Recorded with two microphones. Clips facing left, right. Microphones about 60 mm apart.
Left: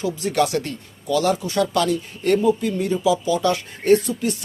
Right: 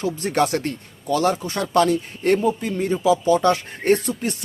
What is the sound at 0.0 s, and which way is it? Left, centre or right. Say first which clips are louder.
Speech: even; right.